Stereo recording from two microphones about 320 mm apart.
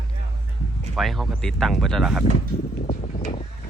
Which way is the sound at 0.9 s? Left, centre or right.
Centre.